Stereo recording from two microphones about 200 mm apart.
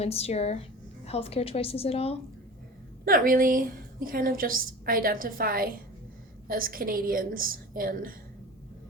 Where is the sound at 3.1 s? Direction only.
45° right (ahead or behind).